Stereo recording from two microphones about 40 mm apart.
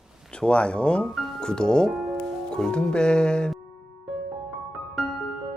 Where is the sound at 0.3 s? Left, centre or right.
Left.